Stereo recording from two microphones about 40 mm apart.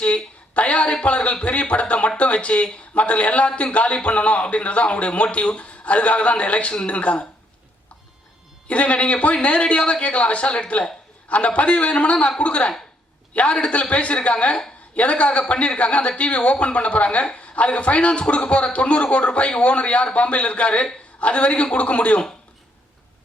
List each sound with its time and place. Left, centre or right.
0.0 s a sound: left
1.0 s speech: left
8.6 s speech: left